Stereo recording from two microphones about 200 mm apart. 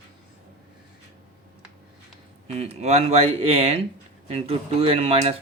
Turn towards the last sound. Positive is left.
turn(degrees=-30)  # may be behind; listen again after turning